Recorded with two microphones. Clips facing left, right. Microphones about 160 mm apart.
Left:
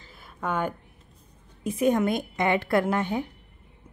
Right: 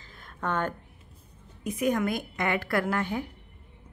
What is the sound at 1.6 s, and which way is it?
A woman's voice, 30° left (ahead or behind).